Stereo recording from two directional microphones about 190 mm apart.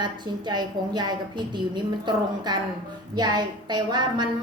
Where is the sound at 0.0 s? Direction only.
25° right (ahead or behind).